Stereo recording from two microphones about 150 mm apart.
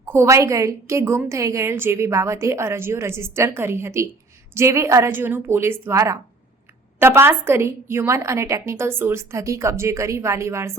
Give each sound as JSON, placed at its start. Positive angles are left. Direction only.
{"t": 0.0, "sound": "a woman's voice", "side_deg": -15}